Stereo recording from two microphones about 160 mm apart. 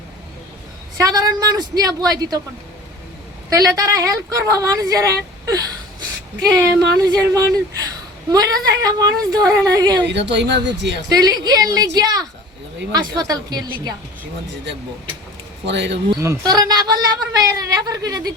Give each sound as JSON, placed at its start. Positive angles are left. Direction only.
{"t": 1.0, "sound": "speech", "side_deg": -25}
{"t": 3.5, "sound": "speech", "side_deg": -20}
{"t": 10.0, "sound": "speech", "side_deg": -90}
{"t": 11.1, "sound": "speech", "side_deg": -25}
{"t": 14.5, "sound": "speech", "side_deg": -90}
{"t": 16.1, "sound": "speech", "side_deg": -15}